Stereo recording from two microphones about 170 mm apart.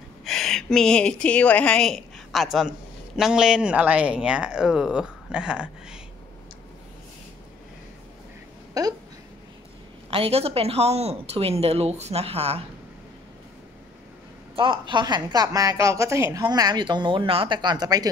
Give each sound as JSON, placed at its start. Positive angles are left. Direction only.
{"t": 0.2, "sound": "a woman's voice", "side_deg": 0}
{"t": 8.8, "sound": "speech", "side_deg": -20}
{"t": 10.1, "sound": "speech", "side_deg": -35}
{"t": 14.5, "sound": "a woman's voice", "side_deg": -30}